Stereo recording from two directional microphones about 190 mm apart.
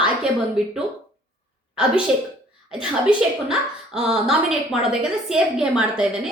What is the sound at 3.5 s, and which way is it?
A woman's voice, 5° right (ahead or behind).